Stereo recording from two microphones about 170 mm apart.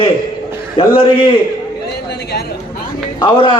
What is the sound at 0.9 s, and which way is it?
Speech, 30° left (ahead or behind).